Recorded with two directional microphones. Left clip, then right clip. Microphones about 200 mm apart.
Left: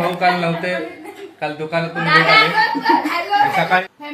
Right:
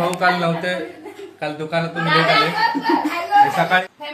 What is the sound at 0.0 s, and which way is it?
Speech, 5° right (ahead or behind).